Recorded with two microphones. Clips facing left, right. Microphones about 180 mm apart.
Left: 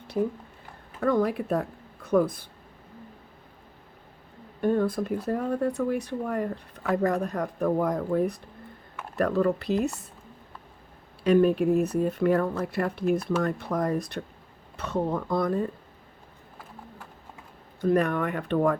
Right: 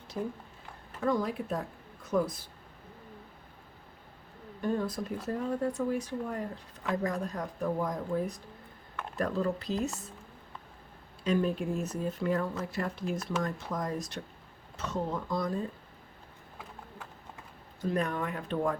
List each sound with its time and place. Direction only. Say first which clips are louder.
1.0 s a woman's voice: left 6 dB; 65° left (ahead or behind)
4.6 s speech: left 7 dB; 55° left (ahead or behind)
11.2 s speech: left 9 dB; 65° left (ahead or behind)
17.7 s speech: left 8 dB; 65° left (ahead or behind)